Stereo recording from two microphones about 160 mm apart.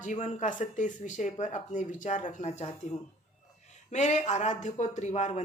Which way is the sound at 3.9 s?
45° left (ahead or behind).